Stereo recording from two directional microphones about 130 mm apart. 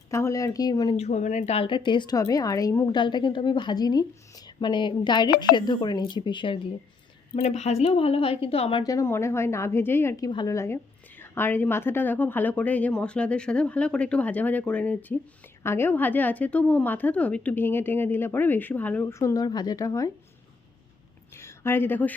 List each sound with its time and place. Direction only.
0.1 s a woman's voice: 25° left (ahead or behind)
0.9 s speech: 60° left (ahead or behind)
1.5 s a woman's voice: 40° left (ahead or behind)
7.3 s a woman's voice: 55° left (ahead or behind)
8.8 s a woman's voice: 25° left (ahead or behind)
10.2 s a woman's voice: 30° left (ahead or behind); by 19.0 s 10° left (ahead or behind)
19.0 s a woman's voice: 25° left (ahead or behind)
21.3 s a sound: 20° left (ahead or behind)